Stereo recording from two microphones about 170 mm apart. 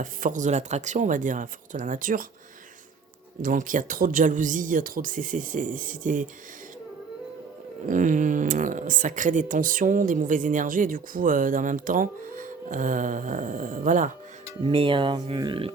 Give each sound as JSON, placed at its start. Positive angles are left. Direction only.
{"t": 0.0, "sound": "speech", "side_deg": -50}
{"t": 3.4, "sound": "speech", "side_deg": -50}
{"t": 7.9, "sound": "speech", "side_deg": -50}
{"t": 14.6, "sound": "speech", "side_deg": -35}